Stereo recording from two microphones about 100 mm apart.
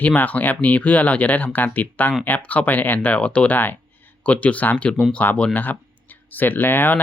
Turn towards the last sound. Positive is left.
turn(degrees=20)  # may be behind; listen again after turning